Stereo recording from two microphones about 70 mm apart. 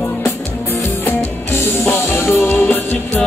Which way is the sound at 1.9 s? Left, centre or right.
Left.